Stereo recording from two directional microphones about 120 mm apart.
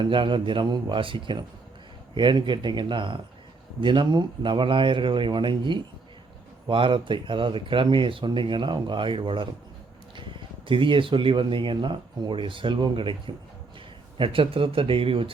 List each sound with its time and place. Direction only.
0.0 s speech: 45° right (ahead or behind)
10.7 s speech: 45° right (ahead or behind)